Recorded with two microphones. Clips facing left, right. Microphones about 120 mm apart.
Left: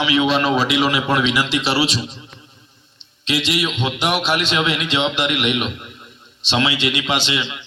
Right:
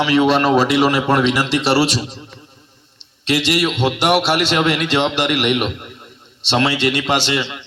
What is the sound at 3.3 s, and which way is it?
A man's voice, 65° right (ahead or behind).